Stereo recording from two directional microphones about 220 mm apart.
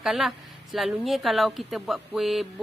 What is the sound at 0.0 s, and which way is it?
Speech, centre (ahead or behind).